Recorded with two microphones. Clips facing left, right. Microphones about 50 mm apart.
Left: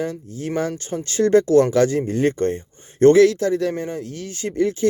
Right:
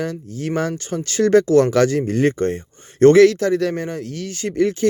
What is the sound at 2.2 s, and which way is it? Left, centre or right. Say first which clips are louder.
Speech: right 1 dB; right.